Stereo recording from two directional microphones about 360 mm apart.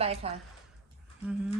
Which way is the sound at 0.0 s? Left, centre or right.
Centre.